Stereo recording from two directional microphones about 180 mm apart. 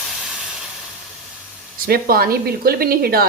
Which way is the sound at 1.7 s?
55° right (ahead or behind).